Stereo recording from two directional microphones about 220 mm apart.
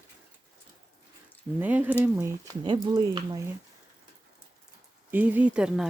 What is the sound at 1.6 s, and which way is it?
Speech, 10° right (ahead or behind).